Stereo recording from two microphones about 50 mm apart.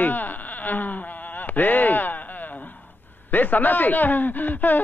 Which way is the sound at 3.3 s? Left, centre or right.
Left.